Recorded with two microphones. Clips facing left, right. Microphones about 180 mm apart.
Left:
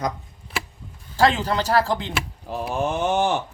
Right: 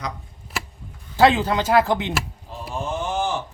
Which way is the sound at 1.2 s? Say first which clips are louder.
Right 3 dB; 20° right (ahead or behind).